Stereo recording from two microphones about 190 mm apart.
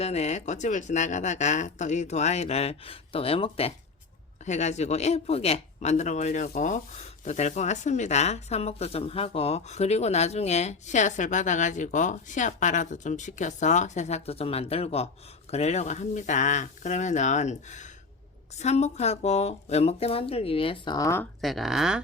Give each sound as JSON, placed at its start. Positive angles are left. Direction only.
{"t": 0.0, "sound": "speech", "side_deg": 35}
{"t": 21.4, "sound": "speech", "side_deg": 0}